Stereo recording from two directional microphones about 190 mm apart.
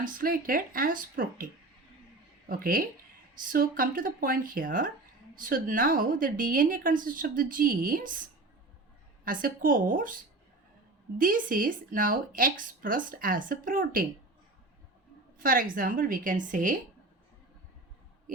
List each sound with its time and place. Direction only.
0.0 s a woman's voice: 50° right (ahead or behind)
2.5 s a woman's voice: 50° right (ahead or behind)
9.2 s a woman's voice: 45° right (ahead or behind)
11.2 s a woman's voice: 45° right (ahead or behind)
15.4 s a woman's voice: 50° right (ahead or behind)